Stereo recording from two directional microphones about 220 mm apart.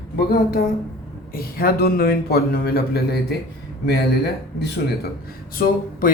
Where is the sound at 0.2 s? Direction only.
45° left (ahead or behind).